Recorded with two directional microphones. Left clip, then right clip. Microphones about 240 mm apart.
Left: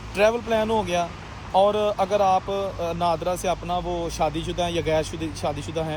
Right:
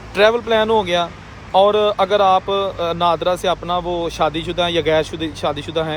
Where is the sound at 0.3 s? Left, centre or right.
Right.